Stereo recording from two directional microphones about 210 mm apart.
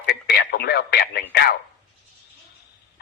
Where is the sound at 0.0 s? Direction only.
50° left (ahead or behind).